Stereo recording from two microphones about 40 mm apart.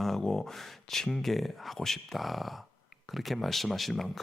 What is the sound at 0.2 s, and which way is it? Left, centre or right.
Speech, centre.